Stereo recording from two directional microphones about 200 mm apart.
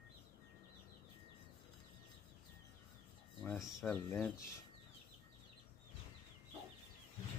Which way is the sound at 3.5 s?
Centre (ahead or behind).